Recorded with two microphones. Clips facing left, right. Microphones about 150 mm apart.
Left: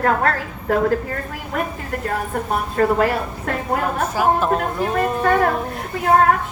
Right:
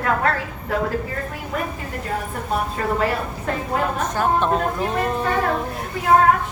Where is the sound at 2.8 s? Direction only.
50° left (ahead or behind).